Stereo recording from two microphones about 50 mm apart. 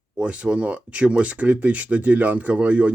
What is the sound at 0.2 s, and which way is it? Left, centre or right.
Speech, right.